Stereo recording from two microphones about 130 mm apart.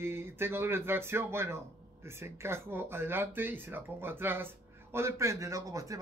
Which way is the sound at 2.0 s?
20° right (ahead or behind).